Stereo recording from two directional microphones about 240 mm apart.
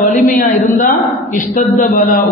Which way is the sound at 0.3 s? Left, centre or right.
Left.